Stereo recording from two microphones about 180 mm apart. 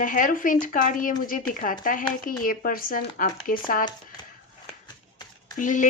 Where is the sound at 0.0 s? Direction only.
50° left (ahead or behind).